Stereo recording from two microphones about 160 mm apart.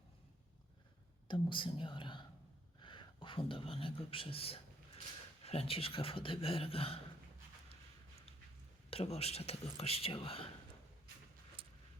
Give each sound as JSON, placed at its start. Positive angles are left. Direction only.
{"t": 1.3, "sound": "speech", "side_deg": 30}
{"t": 8.9, "sound": "speech", "side_deg": 40}